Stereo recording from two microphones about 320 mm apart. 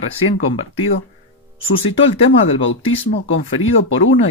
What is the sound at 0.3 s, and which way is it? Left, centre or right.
Speech, left.